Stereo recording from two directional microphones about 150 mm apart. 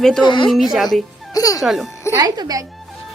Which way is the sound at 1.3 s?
25° left (ahead or behind).